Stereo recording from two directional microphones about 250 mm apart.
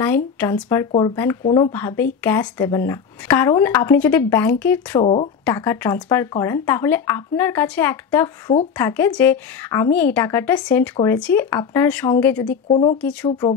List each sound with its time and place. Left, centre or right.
0.0 s speech: centre
5.0 s speech: left
5.4 s speech: centre
12.6 s speech: left